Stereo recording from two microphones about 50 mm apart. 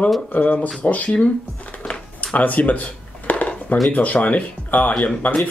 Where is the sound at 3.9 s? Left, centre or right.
Left.